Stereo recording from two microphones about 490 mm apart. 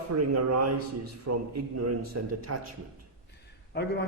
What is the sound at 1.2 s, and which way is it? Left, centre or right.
A man's voice, right.